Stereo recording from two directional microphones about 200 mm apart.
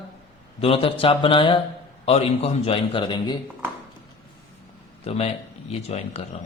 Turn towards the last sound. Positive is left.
turn(degrees=30)  # may be behind; listen again after turning